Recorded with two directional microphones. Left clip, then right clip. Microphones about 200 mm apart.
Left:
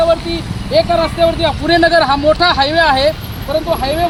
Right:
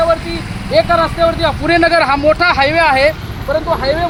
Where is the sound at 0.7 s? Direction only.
10° right (ahead or behind).